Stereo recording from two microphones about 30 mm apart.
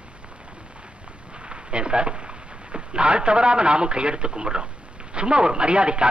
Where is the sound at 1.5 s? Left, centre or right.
Right.